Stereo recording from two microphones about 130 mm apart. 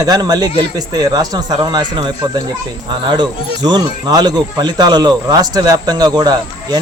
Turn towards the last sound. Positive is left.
turn(degrees=-30)  # may be behind; listen again after turning